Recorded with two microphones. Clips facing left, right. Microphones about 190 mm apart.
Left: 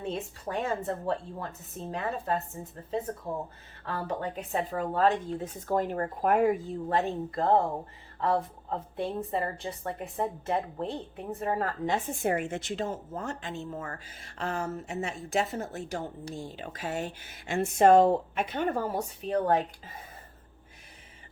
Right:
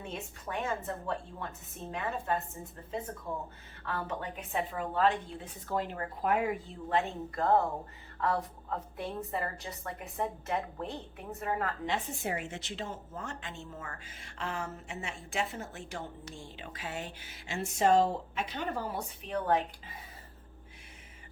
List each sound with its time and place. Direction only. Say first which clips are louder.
0.0 s a woman's voice: left 7 dB; 35° left (ahead or behind)
11.9 s a woman's voice: left 6 dB; 55° left (ahead or behind)